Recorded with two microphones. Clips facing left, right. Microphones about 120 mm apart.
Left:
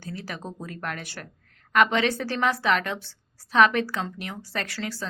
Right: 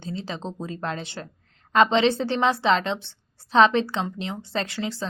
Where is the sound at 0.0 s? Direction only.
25° right (ahead or behind).